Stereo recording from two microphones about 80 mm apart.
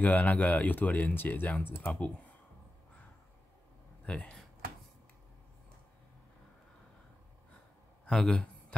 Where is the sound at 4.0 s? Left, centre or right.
Centre.